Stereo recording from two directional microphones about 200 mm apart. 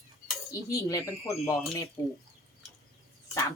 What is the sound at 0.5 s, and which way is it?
Speech, 15° left (ahead or behind).